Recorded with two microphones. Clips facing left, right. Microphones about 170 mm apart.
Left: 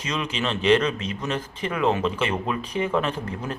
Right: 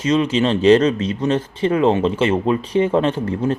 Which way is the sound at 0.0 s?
30° right (ahead or behind).